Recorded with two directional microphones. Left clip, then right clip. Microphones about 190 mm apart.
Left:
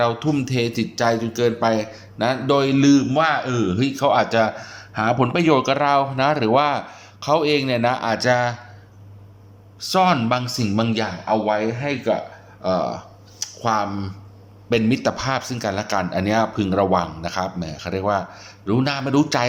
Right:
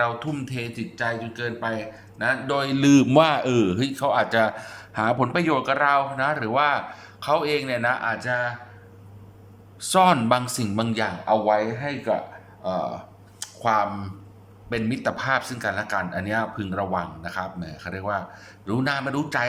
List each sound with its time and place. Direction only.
0.0 s speech: 15° left (ahead or behind)
2.8 s a man's voice: 10° right (ahead or behind)
3.8 s speech: 5° left (ahead or behind); by 8.5 s 25° left (ahead or behind)
9.9 s speech: centre (ahead or behind)